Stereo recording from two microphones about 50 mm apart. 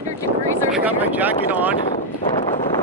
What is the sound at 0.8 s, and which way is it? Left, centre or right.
Speech, right.